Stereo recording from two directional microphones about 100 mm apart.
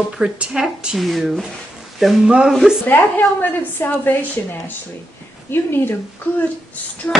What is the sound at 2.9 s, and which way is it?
A woman's voice, 15° left (ahead or behind).